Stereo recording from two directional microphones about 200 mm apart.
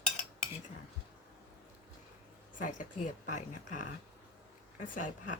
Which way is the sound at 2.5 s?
40° left (ahead or behind).